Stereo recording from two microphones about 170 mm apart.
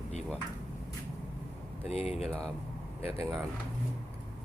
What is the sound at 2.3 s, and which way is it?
Speech, 5° left (ahead or behind).